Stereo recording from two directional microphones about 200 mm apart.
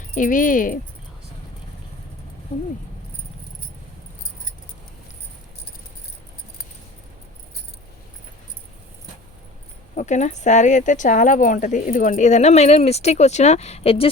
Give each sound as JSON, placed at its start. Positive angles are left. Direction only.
{"t": 0.1, "sound": "speech", "side_deg": 40}
{"t": 9.9, "sound": "speech", "side_deg": 35}